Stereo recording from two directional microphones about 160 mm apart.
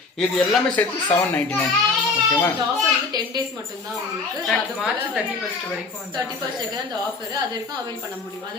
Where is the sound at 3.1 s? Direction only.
25° right (ahead or behind).